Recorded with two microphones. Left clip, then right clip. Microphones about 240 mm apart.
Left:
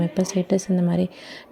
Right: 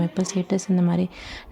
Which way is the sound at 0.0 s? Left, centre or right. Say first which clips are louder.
Left 3 dB; centre.